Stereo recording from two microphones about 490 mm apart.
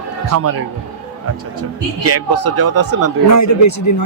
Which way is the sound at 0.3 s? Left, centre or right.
Right.